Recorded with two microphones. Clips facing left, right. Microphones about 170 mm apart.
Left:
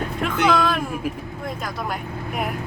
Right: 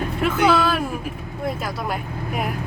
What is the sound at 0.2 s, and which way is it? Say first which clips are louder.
Speech: right 2 dB; 5° right (ahead or behind).